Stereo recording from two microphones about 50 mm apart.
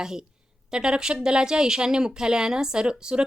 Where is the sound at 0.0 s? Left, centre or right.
Centre.